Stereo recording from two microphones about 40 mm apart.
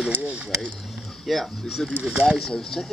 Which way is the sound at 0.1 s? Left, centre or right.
Right.